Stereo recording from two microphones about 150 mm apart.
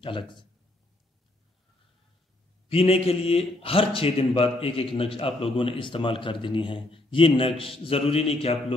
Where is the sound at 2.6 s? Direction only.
40° left (ahead or behind).